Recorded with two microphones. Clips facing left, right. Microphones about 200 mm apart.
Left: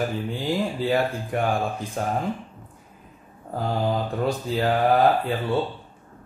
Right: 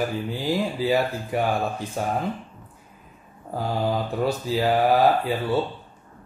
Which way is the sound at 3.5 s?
5° right (ahead or behind).